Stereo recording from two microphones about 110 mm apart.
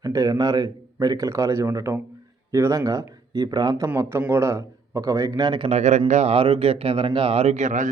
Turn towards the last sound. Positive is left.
turn(degrees=-80)